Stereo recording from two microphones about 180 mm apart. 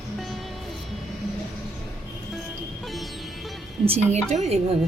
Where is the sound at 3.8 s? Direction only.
35° right (ahead or behind).